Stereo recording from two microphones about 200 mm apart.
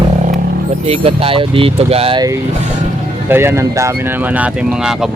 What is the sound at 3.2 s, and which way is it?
Speech, 10° right (ahead or behind).